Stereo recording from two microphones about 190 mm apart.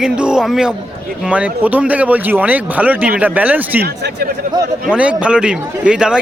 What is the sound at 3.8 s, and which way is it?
Speech, 55° right (ahead or behind).